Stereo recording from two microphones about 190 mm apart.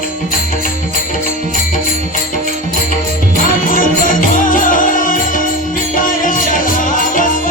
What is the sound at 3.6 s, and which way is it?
Music, 45° left (ahead or behind).